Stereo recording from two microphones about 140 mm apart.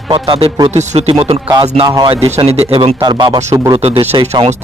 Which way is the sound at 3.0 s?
30° right (ahead or behind).